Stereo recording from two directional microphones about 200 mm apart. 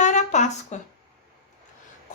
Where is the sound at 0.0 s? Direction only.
35° left (ahead or behind).